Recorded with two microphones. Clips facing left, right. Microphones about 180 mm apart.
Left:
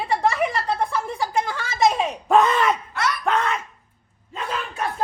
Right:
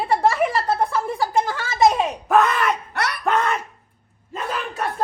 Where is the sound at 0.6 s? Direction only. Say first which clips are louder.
Right 3 dB; 5° right (ahead or behind).